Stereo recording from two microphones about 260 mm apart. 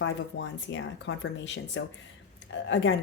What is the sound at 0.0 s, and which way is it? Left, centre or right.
A woman's voice, left.